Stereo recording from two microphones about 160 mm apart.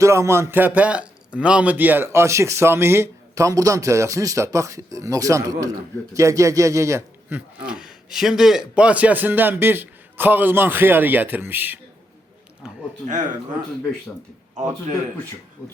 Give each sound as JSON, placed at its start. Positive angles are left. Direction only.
{"t": 0.0, "sound": "a man's voice", "side_deg": -15}
{"t": 7.7, "sound": "a man's voice", "side_deg": -5}
{"t": 12.6, "sound": "a sound", "side_deg": -5}